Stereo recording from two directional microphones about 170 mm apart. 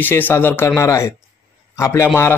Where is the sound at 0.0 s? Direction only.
10° left (ahead or behind).